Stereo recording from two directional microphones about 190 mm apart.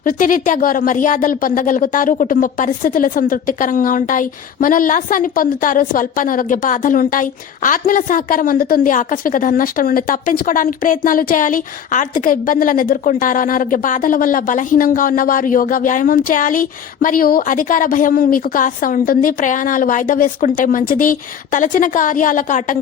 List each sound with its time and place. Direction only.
0.0 s speech: 45° left (ahead or behind)